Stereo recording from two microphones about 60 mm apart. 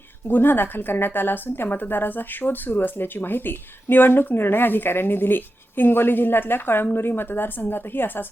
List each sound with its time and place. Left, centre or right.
0.3 s a woman's voice: left